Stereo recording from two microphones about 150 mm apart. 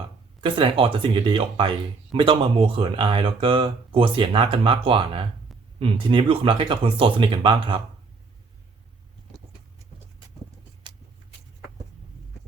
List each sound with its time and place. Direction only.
0.4 s speech: 35° right (ahead or behind)